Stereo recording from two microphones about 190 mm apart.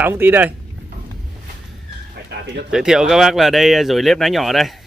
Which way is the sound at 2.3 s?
60° right (ahead or behind).